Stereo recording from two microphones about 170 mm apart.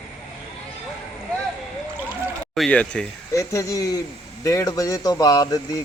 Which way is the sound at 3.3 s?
20° left (ahead or behind).